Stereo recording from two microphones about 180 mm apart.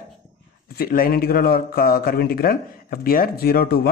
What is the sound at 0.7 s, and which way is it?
Speech, 55° left (ahead or behind).